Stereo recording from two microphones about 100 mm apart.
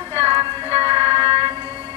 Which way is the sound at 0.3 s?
70° right (ahead or behind).